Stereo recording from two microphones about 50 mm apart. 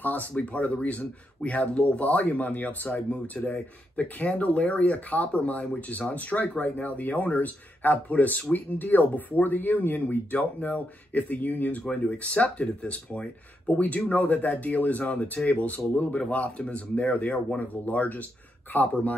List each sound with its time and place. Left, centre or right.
0.0 s speech: left